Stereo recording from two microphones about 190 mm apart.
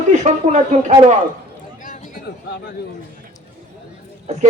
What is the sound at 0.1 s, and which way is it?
Speech, 35° right (ahead or behind).